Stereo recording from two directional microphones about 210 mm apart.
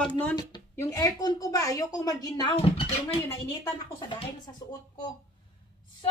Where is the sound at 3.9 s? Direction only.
15° left (ahead or behind).